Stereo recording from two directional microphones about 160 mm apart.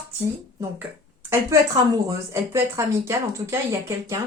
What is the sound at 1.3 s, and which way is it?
Speech, 20° right (ahead or behind).